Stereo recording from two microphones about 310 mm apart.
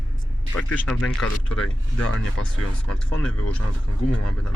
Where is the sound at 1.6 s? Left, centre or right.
Left.